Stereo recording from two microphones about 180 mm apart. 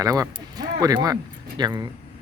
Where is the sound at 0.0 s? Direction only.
20° right (ahead or behind).